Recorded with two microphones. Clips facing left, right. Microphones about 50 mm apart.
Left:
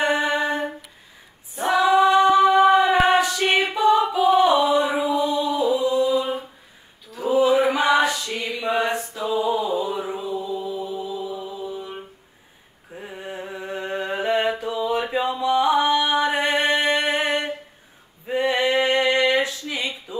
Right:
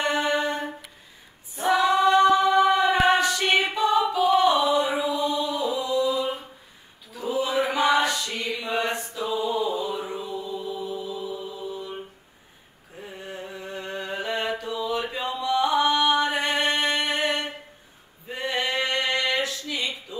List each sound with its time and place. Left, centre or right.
0.0 s humming: centre
1.5 s female singing: centre
2.2 s a capella: centre
4.9 s music: centre
5.8 s music: left
6.1 s mantra: centre
7.2 s chant: centre
8.7 s mantra: centre
9.6 s music: centre
10.1 s chant: left
10.6 s music: centre
11.1 s mantra: centre
15.4 s music: left
18.4 s a sound: left